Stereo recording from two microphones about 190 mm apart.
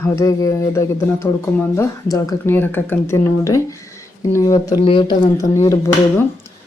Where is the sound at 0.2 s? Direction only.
15° left (ahead or behind).